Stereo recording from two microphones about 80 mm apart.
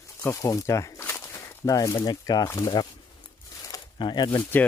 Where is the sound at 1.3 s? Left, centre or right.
Left.